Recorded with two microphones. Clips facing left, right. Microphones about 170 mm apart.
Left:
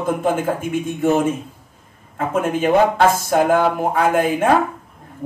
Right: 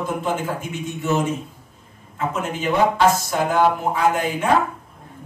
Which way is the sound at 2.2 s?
50° left (ahead or behind).